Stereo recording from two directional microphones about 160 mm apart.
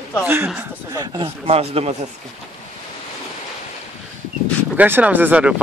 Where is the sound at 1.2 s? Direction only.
40° right (ahead or behind).